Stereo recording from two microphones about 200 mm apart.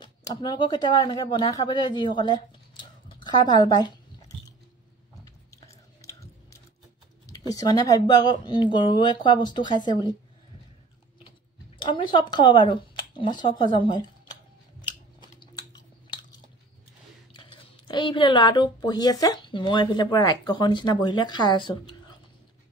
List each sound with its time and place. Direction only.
0.0 s speech: 20° left (ahead or behind)
5.9 s biting: 15° left (ahead or behind)
7.2 s speech: 15° left (ahead or behind)
11.8 s speech: 25° left (ahead or behind)
14.8 s scissors: 20° left (ahead or behind)
17.3 s speech: 25° left (ahead or behind)